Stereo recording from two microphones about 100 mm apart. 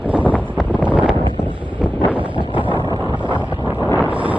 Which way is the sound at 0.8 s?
15° right (ahead or behind).